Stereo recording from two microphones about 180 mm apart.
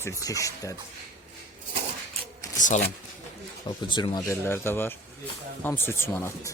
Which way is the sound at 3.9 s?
25° left (ahead or behind).